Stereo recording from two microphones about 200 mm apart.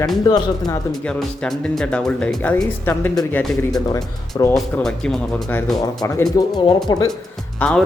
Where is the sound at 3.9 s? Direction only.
15° left (ahead or behind).